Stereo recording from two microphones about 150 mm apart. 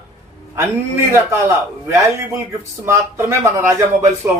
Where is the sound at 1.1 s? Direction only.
20° right (ahead or behind).